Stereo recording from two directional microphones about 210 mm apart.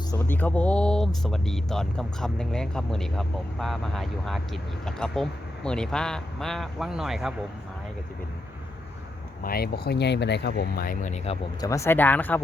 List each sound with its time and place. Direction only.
0.2 s speech: 10° left (ahead or behind)
9.4 s speech: 45° left (ahead or behind)
11.6 s speech: 15° left (ahead or behind)